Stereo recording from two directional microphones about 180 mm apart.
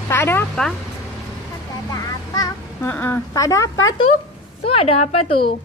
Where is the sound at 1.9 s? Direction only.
20° left (ahead or behind).